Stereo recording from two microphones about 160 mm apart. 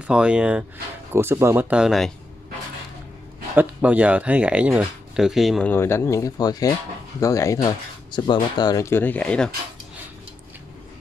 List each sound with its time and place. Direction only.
0.0 s speech: 5° right (ahead or behind)
3.5 s speech: 10° right (ahead or behind)
5.7 s speech: 15° left (ahead or behind)